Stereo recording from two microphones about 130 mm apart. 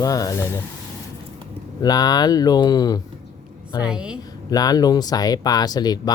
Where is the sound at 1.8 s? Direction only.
30° left (ahead or behind).